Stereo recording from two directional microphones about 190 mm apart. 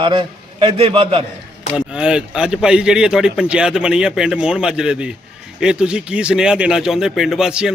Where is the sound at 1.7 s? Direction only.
5° right (ahead or behind).